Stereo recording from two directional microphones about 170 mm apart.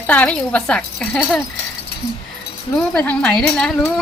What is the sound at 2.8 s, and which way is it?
Speech, 5° left (ahead or behind).